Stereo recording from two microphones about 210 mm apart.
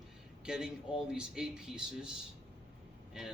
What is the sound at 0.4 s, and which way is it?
Speech, 5° right (ahead or behind).